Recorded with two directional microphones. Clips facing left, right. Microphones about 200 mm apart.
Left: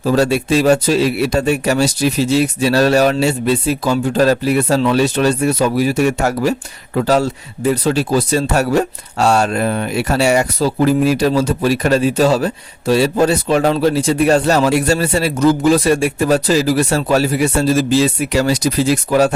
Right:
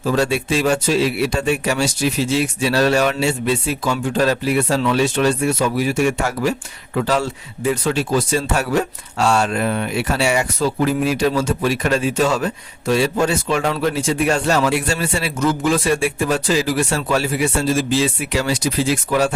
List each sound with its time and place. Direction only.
0.0 s speech: 40° left (ahead or behind)